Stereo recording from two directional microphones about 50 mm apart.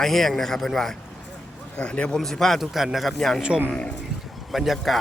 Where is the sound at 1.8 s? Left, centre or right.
Left.